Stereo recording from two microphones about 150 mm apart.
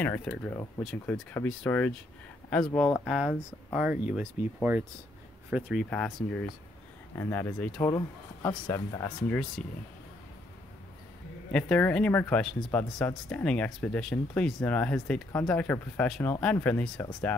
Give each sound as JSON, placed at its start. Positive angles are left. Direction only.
{"t": 0.0, "sound": "speech", "side_deg": 10}
{"t": 5.5, "sound": "speech", "side_deg": -5}
{"t": 7.2, "sound": "speech", "side_deg": 15}
{"t": 7.9, "sound": "speech", "side_deg": 25}
{"t": 11.5, "sound": "speech", "side_deg": 5}